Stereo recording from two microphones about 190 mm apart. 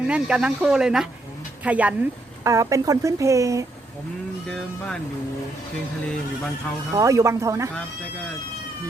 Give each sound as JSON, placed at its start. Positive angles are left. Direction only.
{"t": 0.1, "sound": "speech", "side_deg": -5}
{"t": 4.4, "sound": "speech", "side_deg": 5}
{"t": 6.9, "sound": "speech", "side_deg": -15}